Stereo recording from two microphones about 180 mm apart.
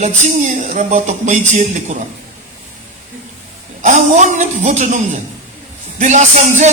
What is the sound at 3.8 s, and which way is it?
Music, 40° right (ahead or behind).